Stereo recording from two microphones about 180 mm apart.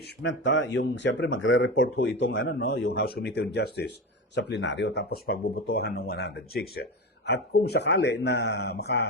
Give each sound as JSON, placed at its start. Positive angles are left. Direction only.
{"t": 0.2, "sound": "speech", "side_deg": 90}